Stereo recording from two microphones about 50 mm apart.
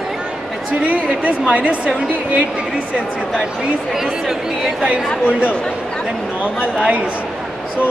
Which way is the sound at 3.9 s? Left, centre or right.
Centre.